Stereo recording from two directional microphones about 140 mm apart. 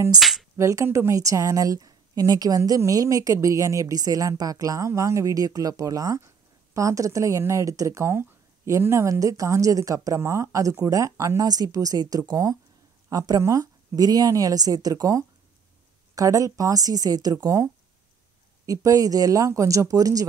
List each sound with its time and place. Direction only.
0.2 s speech: centre (ahead or behind)
0.6 s a woman's voice: 20° right (ahead or behind)
18.7 s a woman's voice: 25° right (ahead or behind)